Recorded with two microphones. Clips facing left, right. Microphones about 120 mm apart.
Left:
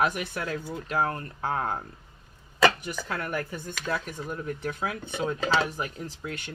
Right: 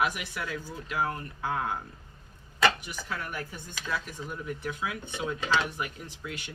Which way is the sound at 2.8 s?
55° left (ahead or behind).